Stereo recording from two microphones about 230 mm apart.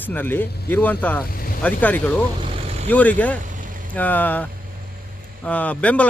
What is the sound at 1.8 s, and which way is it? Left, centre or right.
Speech, centre.